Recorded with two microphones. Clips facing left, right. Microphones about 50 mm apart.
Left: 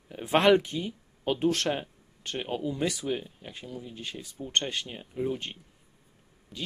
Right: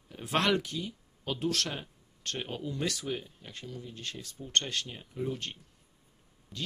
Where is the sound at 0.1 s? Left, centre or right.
Left.